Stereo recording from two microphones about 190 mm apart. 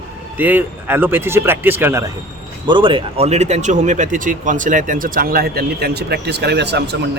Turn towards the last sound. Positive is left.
turn(degrees=-65)  # may be behind; listen again after turning